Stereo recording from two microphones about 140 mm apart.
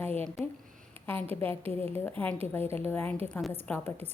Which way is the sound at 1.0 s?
15° left (ahead or behind).